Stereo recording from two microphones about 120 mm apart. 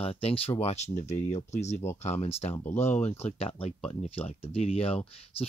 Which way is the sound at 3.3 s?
50° left (ahead or behind).